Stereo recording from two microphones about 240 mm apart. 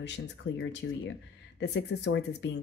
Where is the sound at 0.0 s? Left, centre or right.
Left.